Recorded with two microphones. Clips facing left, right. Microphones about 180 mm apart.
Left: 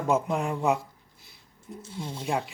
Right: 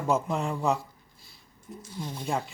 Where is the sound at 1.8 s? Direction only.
25° left (ahead or behind).